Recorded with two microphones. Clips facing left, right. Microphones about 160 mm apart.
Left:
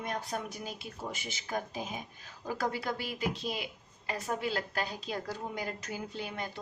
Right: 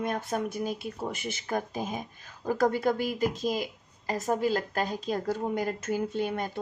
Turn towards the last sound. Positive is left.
turn(degrees=-50)  # may be behind; listen again after turning